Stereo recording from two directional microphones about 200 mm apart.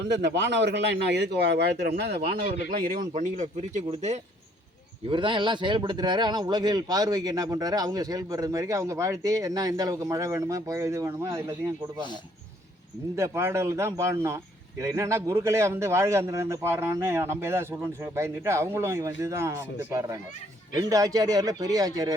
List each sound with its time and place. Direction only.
0.0 s speech: 60° right (ahead or behind); by 11.7 s 15° right (ahead or behind)
13.1 s speech: 15° right (ahead or behind)